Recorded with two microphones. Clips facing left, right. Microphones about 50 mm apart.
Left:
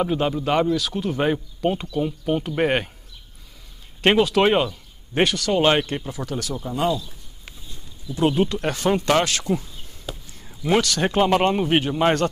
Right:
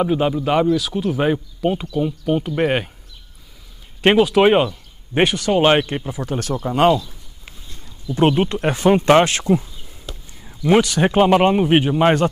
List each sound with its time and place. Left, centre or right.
0.0 s speech: centre
4.0 s speech: centre
6.5 s speech: right
8.1 s speech: right
8.5 s speech: right
9.4 s speech: centre
10.1 s a sound: centre
10.7 s speech: centre